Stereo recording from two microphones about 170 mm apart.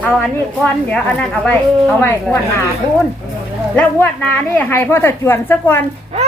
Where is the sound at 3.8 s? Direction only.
10° left (ahead or behind).